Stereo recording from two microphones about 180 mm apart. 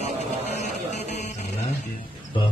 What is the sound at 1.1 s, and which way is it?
Music, 40° left (ahead or behind).